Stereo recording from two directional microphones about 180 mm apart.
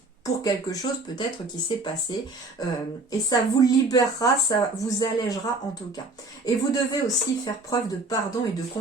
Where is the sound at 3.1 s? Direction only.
20° left (ahead or behind).